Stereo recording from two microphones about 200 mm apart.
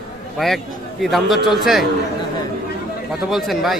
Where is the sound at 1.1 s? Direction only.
Centre (ahead or behind).